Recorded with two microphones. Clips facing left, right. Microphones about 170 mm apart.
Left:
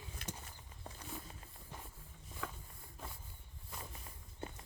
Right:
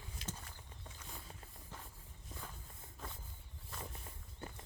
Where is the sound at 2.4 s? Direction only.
90° left.